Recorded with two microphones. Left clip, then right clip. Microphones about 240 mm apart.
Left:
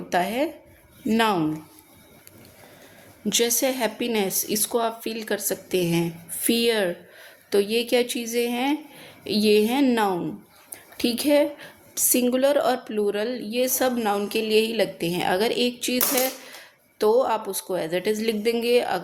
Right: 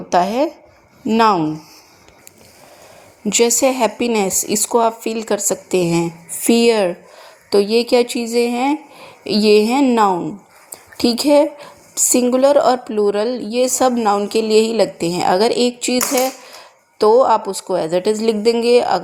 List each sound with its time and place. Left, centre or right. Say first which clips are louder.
0.1 s a woman's voice: right 8 dB; centre
3.6 s a woman's voice: right 9 dB; right
11.0 s a woman's voice: right 8 dB; centre
11.3 s a woman's voice: right 7 dB; right
17.0 s a woman's voice: right 9 dB; right